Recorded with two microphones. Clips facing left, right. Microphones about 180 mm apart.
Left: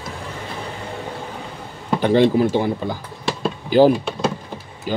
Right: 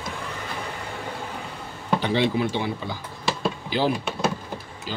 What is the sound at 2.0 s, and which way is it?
Speech, 50° left (ahead or behind).